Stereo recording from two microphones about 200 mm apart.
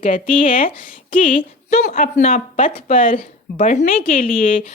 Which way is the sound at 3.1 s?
40° left (ahead or behind).